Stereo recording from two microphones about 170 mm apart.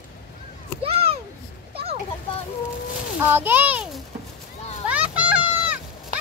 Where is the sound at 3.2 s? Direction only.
10° right (ahead or behind).